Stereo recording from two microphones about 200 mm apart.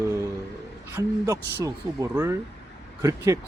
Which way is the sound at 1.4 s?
55° right (ahead or behind).